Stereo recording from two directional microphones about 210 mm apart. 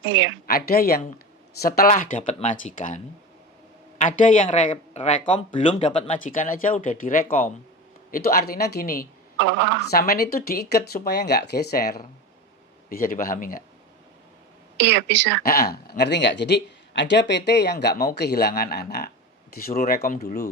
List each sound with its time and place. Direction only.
0.0 s speech: 65° right (ahead or behind)
0.4 s speech: 45° left (ahead or behind)
9.4 s speech: 60° right (ahead or behind)
9.9 s speech: 45° left (ahead or behind)
14.8 s speech: 60° right (ahead or behind)
15.4 s speech: 50° left (ahead or behind)